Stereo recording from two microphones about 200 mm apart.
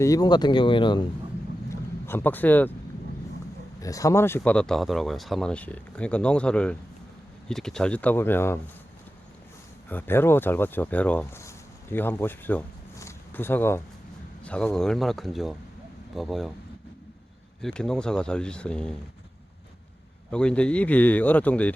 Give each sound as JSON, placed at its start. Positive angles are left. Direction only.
{"t": 0.0, "sound": "speech", "side_deg": 15}
{"t": 1.7, "sound": "a man's voice", "side_deg": 10}
{"t": 3.8, "sound": "speech", "side_deg": 15}
{"t": 9.9, "sound": "speech", "side_deg": 10}
{"t": 17.6, "sound": "speech", "side_deg": 5}
{"t": 20.3, "sound": "speech", "side_deg": 5}